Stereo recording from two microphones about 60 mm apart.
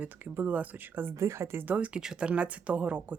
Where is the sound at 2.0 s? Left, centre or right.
Centre.